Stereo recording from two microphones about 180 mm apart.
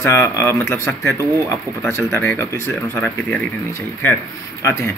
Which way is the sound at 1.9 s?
15° left (ahead or behind).